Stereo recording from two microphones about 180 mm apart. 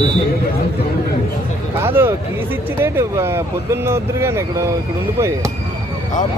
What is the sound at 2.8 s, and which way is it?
Speech, 15° right (ahead or behind).